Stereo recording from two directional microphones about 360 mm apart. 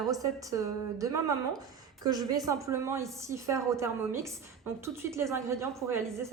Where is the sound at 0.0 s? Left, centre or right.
Centre.